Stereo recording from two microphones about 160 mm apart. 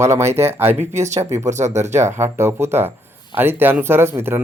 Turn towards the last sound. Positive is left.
turn(degrees=-15)  # may be behind; listen again after turning